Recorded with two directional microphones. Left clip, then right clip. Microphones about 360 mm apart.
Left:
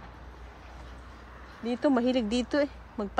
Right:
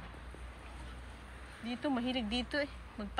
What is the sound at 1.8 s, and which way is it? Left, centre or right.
Speech, left.